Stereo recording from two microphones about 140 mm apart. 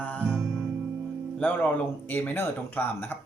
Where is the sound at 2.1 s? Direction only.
15° left (ahead or behind).